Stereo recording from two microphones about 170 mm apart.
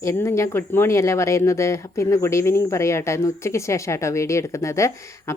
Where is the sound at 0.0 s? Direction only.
15° left (ahead or behind).